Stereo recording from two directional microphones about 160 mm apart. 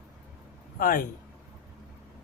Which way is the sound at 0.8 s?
60° left (ahead or behind).